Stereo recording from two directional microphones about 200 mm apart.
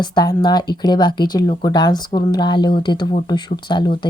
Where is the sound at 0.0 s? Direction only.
20° left (ahead or behind).